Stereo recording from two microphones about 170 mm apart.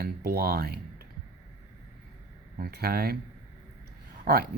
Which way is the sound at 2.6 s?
65° right (ahead or behind).